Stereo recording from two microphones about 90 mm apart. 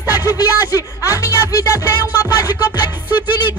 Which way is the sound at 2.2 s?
45° left (ahead or behind).